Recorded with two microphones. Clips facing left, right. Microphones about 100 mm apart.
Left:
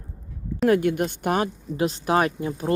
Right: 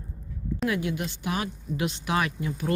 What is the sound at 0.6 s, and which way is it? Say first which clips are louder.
Speech: left 9 dB; 50° left (ahead or behind).